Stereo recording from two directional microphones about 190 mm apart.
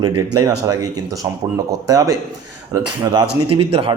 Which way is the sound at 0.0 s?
20° right (ahead or behind).